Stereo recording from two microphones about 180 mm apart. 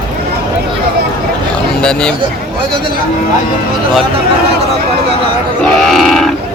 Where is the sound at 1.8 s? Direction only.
5° left (ahead or behind).